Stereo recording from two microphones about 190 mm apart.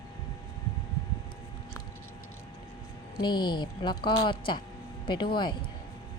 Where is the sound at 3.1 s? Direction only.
25° left (ahead or behind).